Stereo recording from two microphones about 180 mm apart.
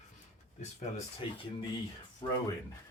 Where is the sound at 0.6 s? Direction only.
40° left (ahead or behind).